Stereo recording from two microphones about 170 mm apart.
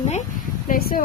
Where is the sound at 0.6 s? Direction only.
60° left (ahead or behind).